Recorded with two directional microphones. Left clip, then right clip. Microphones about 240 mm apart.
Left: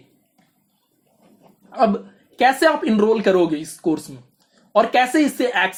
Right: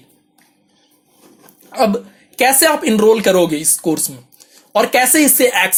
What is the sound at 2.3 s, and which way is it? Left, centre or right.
Speech, right.